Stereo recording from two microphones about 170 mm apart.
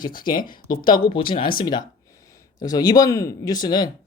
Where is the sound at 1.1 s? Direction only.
30° left (ahead or behind).